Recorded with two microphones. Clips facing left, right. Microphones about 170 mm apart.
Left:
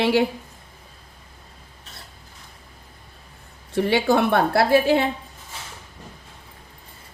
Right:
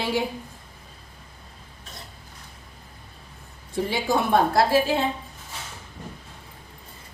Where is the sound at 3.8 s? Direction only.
70° left (ahead or behind).